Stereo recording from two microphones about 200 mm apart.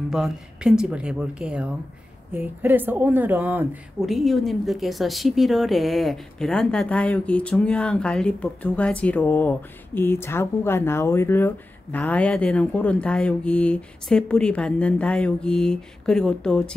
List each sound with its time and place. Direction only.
0.1 s speech: 5° right (ahead or behind)